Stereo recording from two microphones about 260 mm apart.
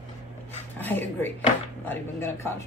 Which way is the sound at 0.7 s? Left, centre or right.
Centre.